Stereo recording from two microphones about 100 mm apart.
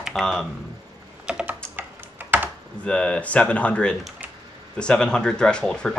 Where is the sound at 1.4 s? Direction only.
20° right (ahead or behind).